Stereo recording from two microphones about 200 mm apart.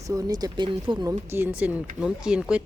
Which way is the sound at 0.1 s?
20° right (ahead or behind).